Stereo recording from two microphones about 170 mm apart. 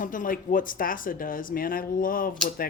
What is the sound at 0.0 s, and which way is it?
Speech, 55° left (ahead or behind).